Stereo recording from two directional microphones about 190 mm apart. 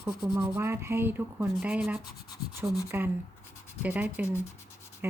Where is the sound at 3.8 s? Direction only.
10° right (ahead or behind).